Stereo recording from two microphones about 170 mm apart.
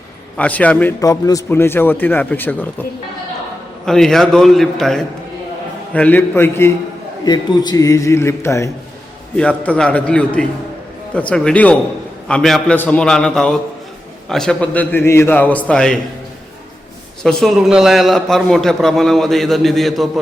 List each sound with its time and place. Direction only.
0.3 s a man's voice: 10° left (ahead or behind)
1.0 s a man's voice: 20° left (ahead or behind)
3.8 s a man's voice: 5° left (ahead or behind)
7.3 s a man's voice: 25° left (ahead or behind); by 16.0 s 5° left (ahead or behind)
17.2 s a man's voice: centre (ahead or behind)